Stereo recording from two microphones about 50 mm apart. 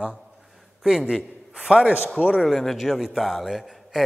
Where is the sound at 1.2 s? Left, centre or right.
Right.